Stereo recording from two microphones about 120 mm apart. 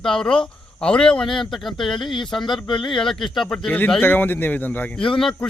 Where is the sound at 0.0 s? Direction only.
5° left (ahead or behind).